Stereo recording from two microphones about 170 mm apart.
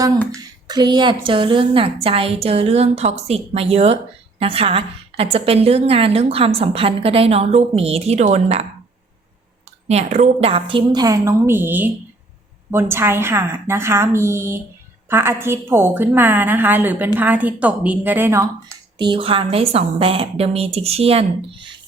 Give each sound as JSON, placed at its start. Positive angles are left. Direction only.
{"t": 0.7, "sound": "a woman's voice", "side_deg": -25}
{"t": 9.9, "sound": "a woman's voice", "side_deg": -40}
{"t": 18.9, "sound": "a woman's voice", "side_deg": -30}